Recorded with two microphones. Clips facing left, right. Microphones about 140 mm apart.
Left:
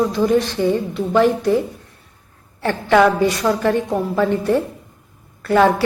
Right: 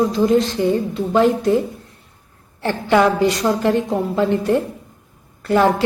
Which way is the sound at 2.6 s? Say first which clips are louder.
Left 1 dB; 20° right (ahead or behind).